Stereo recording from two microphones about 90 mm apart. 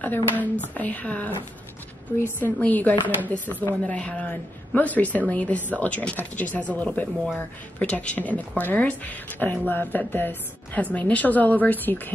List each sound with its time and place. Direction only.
0.0 s a woman's voice: 20° left (ahead or behind)